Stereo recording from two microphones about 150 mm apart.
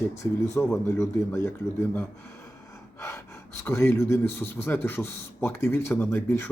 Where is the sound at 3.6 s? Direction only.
15° left (ahead or behind).